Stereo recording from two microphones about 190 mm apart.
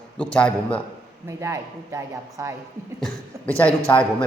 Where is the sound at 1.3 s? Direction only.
15° right (ahead or behind).